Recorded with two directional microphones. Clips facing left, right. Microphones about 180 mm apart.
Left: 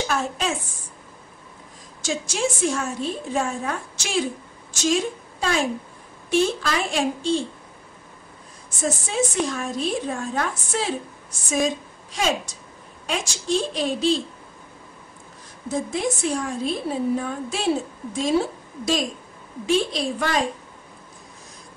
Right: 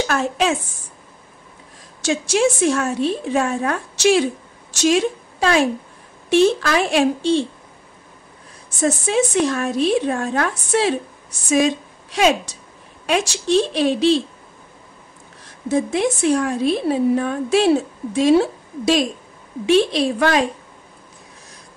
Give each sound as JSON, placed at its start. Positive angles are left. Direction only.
{"t": 0.0, "sound": "a woman's voice", "side_deg": -75}
{"t": 2.0, "sound": "a woman's voice", "side_deg": -70}
{"t": 8.8, "sound": "a woman's voice", "side_deg": -70}
{"t": 15.7, "sound": "a woman's voice", "side_deg": -70}